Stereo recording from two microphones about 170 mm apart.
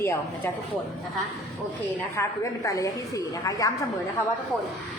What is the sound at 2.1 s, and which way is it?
A woman's voice, 20° left (ahead or behind).